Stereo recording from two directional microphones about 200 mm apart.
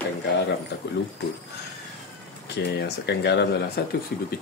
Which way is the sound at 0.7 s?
60° left (ahead or behind).